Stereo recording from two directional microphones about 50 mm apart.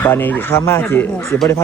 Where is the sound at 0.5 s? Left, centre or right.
Left.